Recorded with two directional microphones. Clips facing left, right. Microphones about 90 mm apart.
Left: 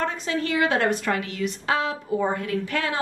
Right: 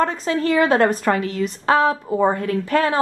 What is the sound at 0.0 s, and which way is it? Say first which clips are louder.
Speech: right 6 dB; 40° right (ahead or behind).